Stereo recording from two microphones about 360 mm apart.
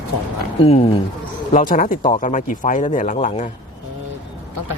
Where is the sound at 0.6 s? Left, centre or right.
Centre.